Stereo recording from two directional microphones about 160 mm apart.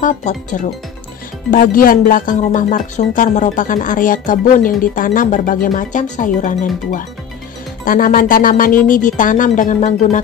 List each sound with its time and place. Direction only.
0.0 s speech: 50° left (ahead or behind)